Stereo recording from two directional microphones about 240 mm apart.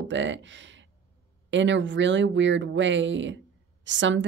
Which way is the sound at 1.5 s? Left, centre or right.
Right.